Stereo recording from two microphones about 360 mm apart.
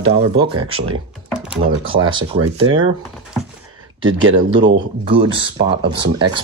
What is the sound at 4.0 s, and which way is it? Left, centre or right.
Speech, right.